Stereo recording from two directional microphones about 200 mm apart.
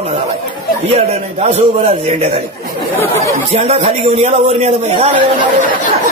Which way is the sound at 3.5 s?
30° right (ahead or behind).